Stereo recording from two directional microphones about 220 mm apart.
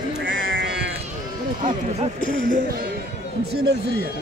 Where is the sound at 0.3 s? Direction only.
55° right (ahead or behind).